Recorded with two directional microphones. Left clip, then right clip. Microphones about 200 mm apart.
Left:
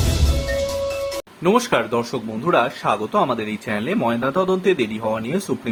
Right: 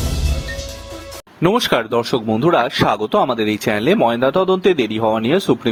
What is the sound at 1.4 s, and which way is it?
Speech, 45° right (ahead or behind).